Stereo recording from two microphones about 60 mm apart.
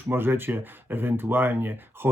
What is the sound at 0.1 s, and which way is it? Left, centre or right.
Speech, right.